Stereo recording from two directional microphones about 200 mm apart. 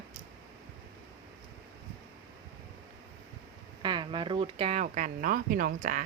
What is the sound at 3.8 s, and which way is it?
Speech, 25° right (ahead or behind).